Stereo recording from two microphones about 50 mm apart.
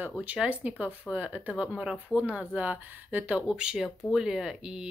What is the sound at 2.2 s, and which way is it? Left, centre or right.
Speech, right.